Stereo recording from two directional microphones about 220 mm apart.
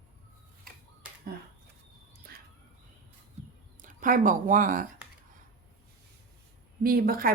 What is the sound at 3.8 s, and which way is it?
Speech, 35° right (ahead or behind).